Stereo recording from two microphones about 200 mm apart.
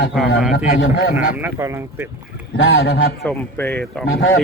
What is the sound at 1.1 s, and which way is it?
Speech, 10° right (ahead or behind).